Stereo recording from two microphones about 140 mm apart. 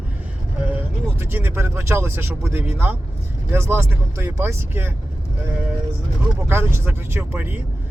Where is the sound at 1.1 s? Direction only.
15° right (ahead or behind).